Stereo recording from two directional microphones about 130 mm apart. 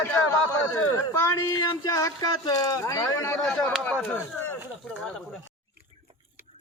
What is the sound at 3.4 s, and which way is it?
Speech, 5° left (ahead or behind).